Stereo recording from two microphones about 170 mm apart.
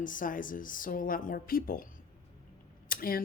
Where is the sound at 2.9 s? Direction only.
60° left (ahead or behind).